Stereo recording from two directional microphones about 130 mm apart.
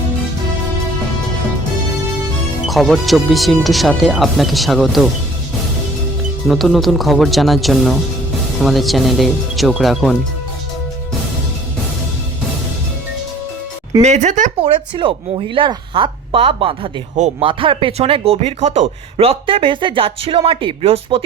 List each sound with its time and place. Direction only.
2.6 s speech: centre (ahead or behind)
6.5 s speech: centre (ahead or behind)
14.0 s speech: 65° right (ahead or behind)
14.6 s speech: 45° right (ahead or behind)